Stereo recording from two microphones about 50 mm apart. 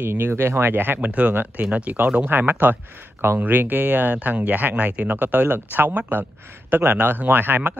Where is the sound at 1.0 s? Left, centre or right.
Right.